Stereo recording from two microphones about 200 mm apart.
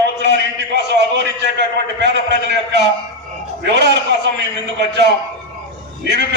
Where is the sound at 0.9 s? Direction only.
60° right (ahead or behind).